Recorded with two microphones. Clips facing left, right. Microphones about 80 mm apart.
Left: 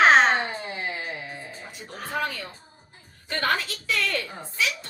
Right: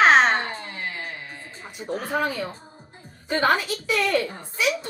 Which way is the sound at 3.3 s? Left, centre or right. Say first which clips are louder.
Right 5 dB; centre.